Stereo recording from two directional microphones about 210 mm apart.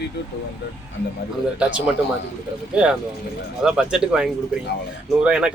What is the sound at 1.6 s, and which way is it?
Speech, 5° right (ahead or behind).